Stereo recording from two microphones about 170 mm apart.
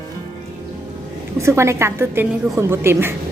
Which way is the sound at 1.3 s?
15° right (ahead or behind).